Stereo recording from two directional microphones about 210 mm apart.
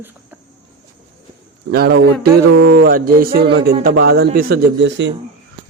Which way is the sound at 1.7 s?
50° right (ahead or behind).